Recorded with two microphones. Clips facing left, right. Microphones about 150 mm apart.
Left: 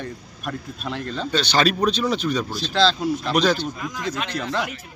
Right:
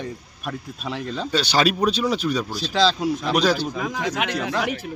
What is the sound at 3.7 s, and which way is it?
Speech, 85° right.